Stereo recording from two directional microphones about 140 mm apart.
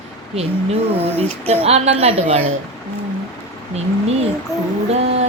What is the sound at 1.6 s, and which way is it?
Speech, 45° right (ahead or behind).